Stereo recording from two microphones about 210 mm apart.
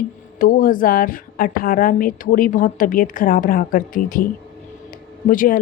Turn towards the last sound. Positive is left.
turn(degrees=40)  # may be behind; listen again after turning